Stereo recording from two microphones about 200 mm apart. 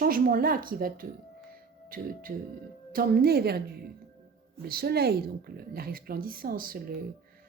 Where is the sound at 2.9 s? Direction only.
50° right (ahead or behind).